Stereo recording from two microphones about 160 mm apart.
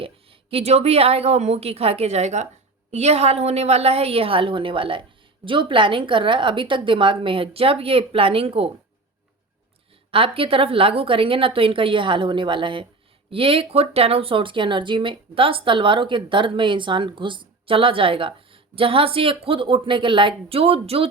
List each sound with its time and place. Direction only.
0.0 s a woman's voice: 35° right (ahead or behind)
10.1 s speech: 35° right (ahead or behind)